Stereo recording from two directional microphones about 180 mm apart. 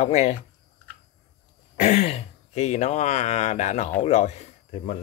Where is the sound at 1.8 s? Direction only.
40° left (ahead or behind).